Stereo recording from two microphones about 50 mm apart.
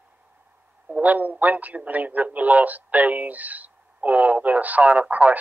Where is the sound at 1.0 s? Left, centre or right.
Right.